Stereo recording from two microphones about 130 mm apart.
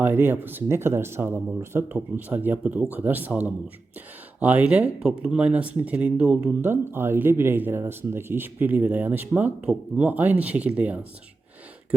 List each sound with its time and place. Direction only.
0.0 s speech: 15° right (ahead or behind)